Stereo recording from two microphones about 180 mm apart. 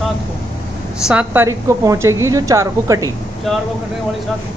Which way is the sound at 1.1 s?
10° right (ahead or behind).